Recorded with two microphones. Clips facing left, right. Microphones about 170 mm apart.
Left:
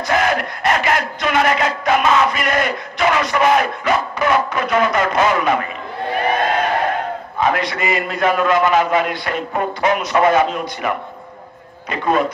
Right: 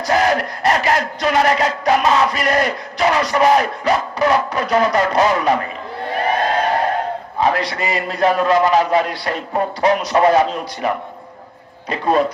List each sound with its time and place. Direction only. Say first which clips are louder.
0.0 s battle cry: right 2 dB; 35° right (ahead or behind)
6.5 s crowd: right 1 dB; 35° right (ahead or behind)
7.3 s a man's voice: even; 35° right (ahead or behind)
11.9 s a man's voice: right 1 dB; 35° right (ahead or behind)